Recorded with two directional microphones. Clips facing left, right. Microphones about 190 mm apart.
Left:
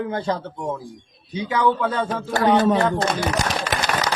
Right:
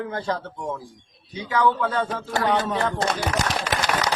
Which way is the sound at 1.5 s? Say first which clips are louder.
Left 1 dB; 20° left (ahead or behind).